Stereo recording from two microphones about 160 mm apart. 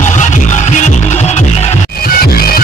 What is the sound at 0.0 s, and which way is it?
Music, 50° left (ahead or behind).